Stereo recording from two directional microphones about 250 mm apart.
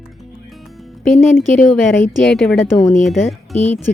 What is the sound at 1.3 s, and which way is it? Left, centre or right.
Speech, centre.